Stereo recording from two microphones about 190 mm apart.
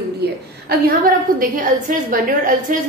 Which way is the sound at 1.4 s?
45° right (ahead or behind).